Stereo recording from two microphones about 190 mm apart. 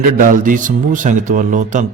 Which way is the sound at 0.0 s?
45° right (ahead or behind).